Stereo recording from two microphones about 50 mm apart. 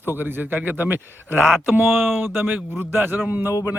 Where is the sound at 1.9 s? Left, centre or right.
Centre.